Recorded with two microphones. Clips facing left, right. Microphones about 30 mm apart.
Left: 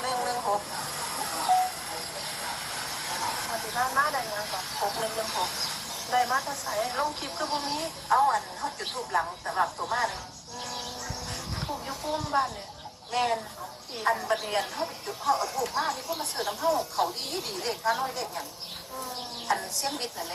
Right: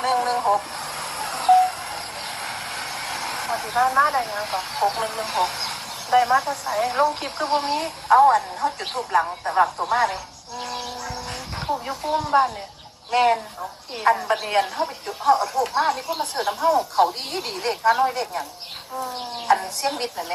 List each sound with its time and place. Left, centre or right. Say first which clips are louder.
0.0 s vehicle: right 8 dB; right
9.9 s speech: right 8 dB; right
10.6 s vehicle: right 6 dB; right
12.0 s speech: right 8 dB; right